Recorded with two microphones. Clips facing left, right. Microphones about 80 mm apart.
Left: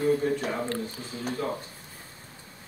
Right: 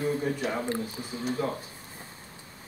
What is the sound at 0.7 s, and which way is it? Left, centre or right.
Speech, centre.